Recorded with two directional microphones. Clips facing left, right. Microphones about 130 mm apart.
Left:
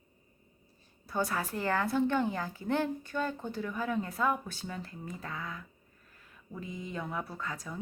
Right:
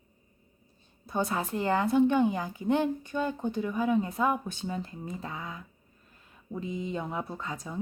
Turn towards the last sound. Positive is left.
turn(degrees=-20)  # may be behind; listen again after turning